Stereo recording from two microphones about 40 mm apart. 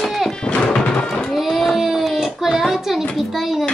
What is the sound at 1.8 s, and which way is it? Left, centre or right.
Child singing, centre.